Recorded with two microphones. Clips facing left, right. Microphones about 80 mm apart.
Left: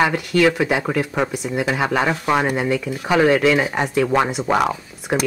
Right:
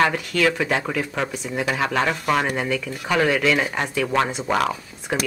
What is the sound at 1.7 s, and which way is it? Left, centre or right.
Speech, centre.